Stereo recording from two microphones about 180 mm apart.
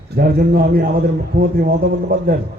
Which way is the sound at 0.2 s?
55° right (ahead or behind).